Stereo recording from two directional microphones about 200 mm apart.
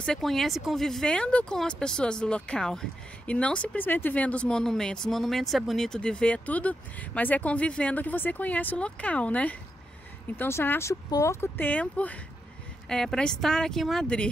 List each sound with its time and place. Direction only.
0.0 s speech: centre (ahead or behind)